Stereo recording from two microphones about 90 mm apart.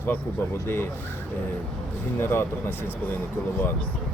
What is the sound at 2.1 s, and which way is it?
Speech, 30° left (ahead or behind).